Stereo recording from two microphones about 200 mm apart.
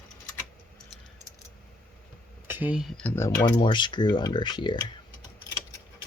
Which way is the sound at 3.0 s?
10° left (ahead or behind).